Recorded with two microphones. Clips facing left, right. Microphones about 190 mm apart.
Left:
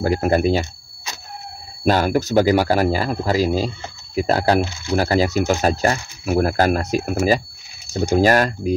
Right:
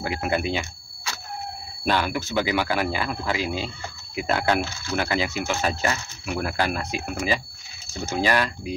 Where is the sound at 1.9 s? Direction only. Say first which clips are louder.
Left 7 dB; 40° left (ahead or behind).